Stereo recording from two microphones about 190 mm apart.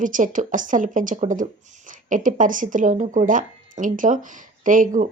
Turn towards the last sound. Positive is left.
turn(degrees=-45)  # may be behind; listen again after turning